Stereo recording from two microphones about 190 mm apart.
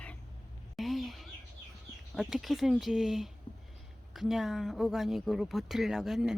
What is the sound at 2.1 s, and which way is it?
Speech, centre (ahead or behind).